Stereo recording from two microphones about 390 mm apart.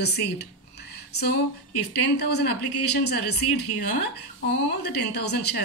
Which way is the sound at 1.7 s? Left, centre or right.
Left.